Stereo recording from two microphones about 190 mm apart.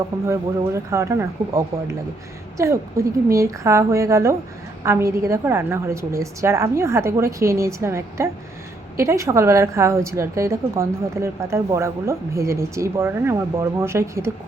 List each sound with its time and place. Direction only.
0.3 s a woman's voice: 15° right (ahead or behind)